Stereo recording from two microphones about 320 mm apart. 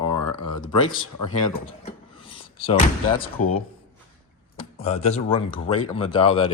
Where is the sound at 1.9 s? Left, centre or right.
Centre.